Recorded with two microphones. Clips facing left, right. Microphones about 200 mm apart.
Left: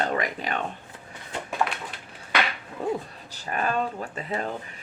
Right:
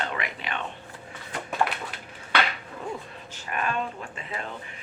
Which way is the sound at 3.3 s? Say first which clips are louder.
Left 3 dB; 35° left (ahead or behind).